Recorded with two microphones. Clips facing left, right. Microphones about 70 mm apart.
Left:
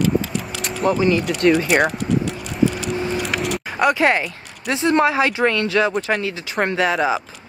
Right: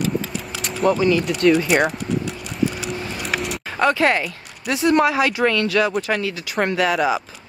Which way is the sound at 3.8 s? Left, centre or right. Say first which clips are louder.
Left 1 dB; centre.